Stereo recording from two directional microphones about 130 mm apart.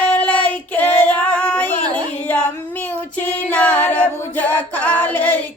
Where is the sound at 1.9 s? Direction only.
10° left (ahead or behind).